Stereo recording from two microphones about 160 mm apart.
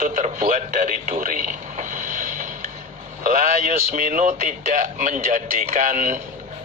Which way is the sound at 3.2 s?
55° right (ahead or behind).